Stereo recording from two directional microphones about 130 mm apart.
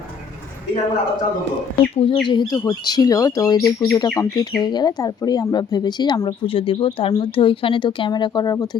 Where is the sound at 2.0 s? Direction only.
40° left (ahead or behind).